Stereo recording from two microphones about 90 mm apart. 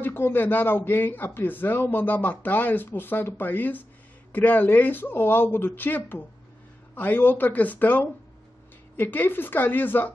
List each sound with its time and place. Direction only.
0.0 s a man's voice: 25° left (ahead or behind)